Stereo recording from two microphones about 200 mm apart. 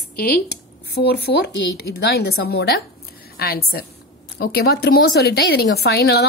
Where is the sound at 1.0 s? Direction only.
55° left (ahead or behind).